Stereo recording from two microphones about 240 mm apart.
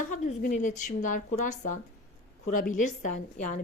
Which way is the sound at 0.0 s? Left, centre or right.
Left.